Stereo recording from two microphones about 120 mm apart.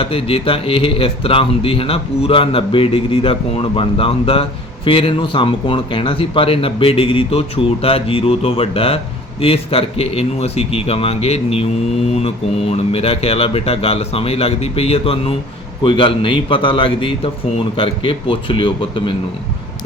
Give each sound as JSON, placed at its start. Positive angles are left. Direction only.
{"t": 0.0, "sound": "a man's voice", "side_deg": 50}
{"t": 12.7, "sound": "a man's voice", "side_deg": 55}